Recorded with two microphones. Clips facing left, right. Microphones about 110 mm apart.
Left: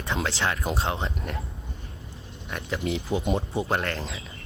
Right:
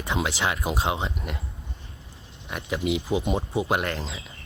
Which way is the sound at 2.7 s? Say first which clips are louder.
Right 2 dB; 15° right (ahead or behind).